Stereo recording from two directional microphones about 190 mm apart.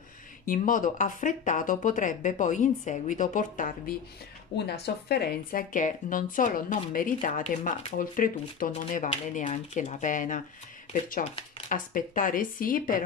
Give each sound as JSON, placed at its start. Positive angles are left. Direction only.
{"t": 0.5, "sound": "speech", "side_deg": 45}
{"t": 4.6, "sound": "speech", "side_deg": 60}